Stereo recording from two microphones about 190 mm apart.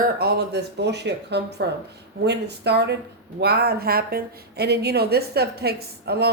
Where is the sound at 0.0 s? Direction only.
55° right (ahead or behind).